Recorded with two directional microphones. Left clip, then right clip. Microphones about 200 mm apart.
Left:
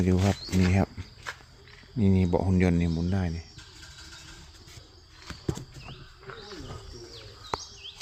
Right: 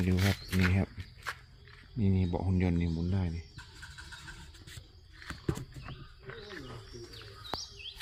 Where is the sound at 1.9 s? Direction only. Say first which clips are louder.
Left 8 dB; 45° left (ahead or behind).